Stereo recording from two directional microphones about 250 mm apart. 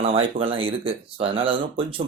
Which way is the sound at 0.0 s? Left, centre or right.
Right.